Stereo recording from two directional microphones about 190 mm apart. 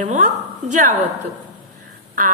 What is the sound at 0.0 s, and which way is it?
Speech, 40° right (ahead or behind).